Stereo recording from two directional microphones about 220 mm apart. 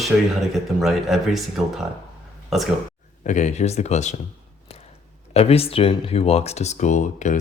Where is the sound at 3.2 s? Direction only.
30° left (ahead or behind).